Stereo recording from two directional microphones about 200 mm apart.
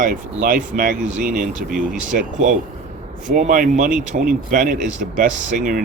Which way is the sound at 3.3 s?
40° right (ahead or behind).